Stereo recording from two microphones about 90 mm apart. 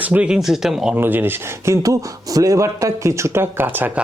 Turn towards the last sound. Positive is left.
turn(degrees=-20)  # may be behind; listen again after turning